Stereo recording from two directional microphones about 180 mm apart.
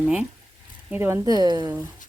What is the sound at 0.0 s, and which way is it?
Speech, 5° right (ahead or behind).